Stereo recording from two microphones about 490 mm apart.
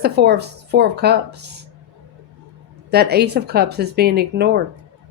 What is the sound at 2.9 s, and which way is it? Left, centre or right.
Speech, centre.